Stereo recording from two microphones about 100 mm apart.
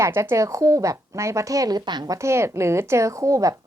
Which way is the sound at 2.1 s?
25° right (ahead or behind).